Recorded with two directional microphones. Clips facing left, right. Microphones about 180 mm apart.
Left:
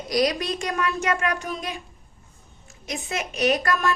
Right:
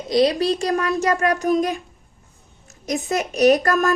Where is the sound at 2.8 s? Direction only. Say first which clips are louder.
Right 7 dB; 40° right (ahead or behind).